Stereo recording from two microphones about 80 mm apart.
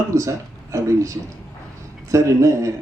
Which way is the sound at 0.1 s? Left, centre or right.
Right.